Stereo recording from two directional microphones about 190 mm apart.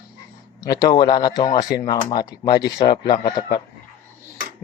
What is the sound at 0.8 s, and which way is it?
Speech, 25° left (ahead or behind).